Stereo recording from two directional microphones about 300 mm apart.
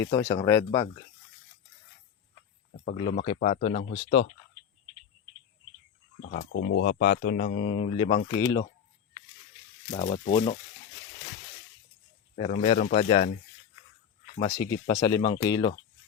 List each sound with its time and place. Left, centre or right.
0.0 s speech: centre
2.8 s speech: centre
6.2 s speech: left; by 8.6 s centre
10.3 s speech: centre
12.4 s speech: left
14.3 s speech: centre